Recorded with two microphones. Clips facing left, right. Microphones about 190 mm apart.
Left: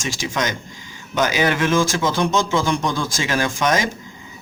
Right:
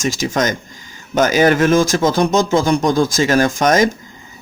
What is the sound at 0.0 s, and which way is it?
Speech, 45° right (ahead or behind).